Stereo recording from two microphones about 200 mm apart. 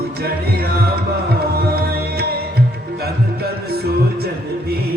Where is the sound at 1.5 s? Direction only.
50° right (ahead or behind).